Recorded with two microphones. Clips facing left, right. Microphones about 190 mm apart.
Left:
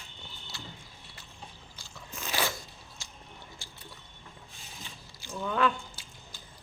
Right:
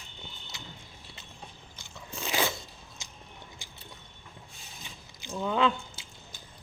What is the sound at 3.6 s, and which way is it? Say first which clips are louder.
Mechanisms: even; 20° right (ahead or behind).